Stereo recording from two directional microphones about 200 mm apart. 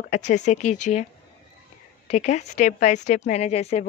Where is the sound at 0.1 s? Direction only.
35° left (ahead or behind).